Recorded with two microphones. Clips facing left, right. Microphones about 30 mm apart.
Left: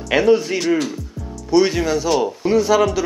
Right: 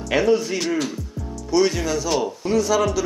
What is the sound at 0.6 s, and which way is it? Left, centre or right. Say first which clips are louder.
Speech: left 4 dB; centre.